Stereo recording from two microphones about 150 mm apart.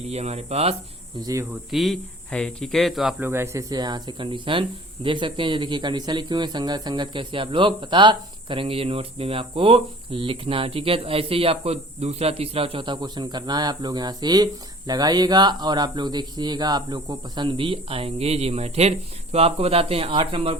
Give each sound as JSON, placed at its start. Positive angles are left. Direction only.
{"t": 0.1, "sound": "speech", "side_deg": -45}
{"t": 1.2, "sound": "speech", "side_deg": -20}
{"t": 1.7, "sound": "speech", "side_deg": 0}
{"t": 3.2, "sound": "speech", "side_deg": -15}